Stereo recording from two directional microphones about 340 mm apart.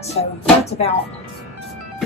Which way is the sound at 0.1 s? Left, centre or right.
Centre.